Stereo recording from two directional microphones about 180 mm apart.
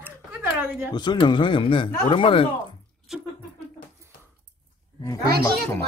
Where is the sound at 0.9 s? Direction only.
25° left (ahead or behind).